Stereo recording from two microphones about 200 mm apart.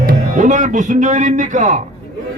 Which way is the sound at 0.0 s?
40° right (ahead or behind).